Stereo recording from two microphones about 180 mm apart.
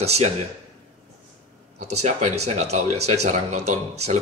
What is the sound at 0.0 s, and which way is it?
Speech, 35° right (ahead or behind).